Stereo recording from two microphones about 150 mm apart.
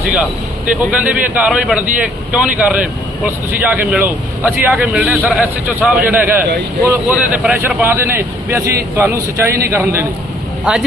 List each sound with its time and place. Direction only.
0.9 s a man's voice: 10° right (ahead or behind)
10.7 s speech: 5° right (ahead or behind)